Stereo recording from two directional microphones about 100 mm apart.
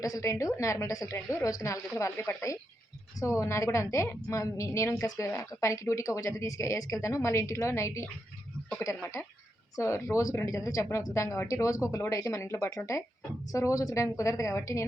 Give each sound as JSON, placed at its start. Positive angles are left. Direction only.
{"t": 0.0, "sound": "a woman's voice", "side_deg": 35}
{"t": 9.7, "sound": "a woman's voice", "side_deg": 30}